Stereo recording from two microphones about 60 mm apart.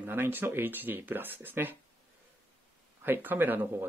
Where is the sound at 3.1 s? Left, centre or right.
Right.